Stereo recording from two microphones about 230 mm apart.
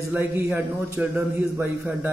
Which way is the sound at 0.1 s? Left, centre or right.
Centre.